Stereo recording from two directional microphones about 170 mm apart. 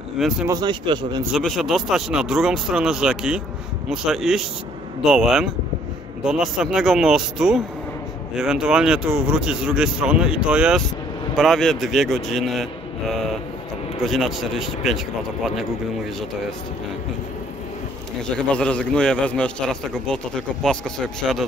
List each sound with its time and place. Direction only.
0.5 s speech: 25° right (ahead or behind)
1.3 s speech: centre (ahead or behind)
14.0 s speech: centre (ahead or behind)
18.5 s speech: 5° left (ahead or behind)
21.2 s speech: centre (ahead or behind)